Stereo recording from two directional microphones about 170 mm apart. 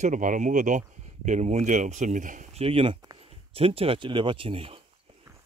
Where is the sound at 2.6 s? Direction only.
30° right (ahead or behind).